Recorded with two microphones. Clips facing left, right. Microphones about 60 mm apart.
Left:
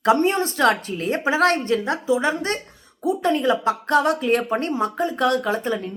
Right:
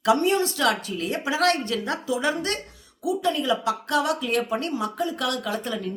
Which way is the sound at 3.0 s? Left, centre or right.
Left.